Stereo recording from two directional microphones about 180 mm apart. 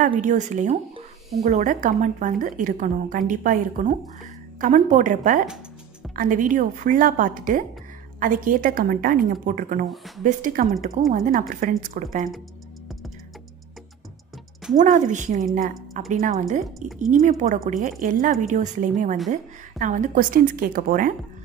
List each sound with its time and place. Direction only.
0.0 s a woman's voice: 45° right (ahead or behind)
9.8 s speech: centre (ahead or behind)
10.2 s a woman's voice: 50° right (ahead or behind)
14.8 s a woman's voice: 45° right (ahead or behind)